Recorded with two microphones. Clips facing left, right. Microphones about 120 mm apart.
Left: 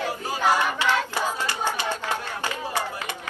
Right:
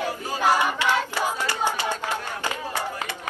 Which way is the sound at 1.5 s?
15° right (ahead or behind).